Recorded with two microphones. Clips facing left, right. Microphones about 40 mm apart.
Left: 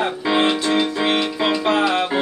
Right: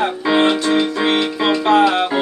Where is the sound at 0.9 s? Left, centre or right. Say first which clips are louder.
Right 3 dB; centre.